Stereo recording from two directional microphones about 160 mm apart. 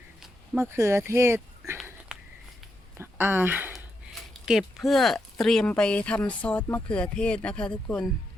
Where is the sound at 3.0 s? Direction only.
15° right (ahead or behind); by 8.1 s 5° left (ahead or behind).